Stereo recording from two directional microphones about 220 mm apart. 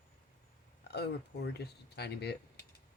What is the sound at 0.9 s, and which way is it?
Speech, 50° left (ahead or behind).